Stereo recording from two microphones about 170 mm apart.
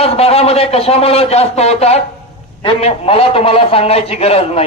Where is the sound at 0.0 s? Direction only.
35° left (ahead or behind).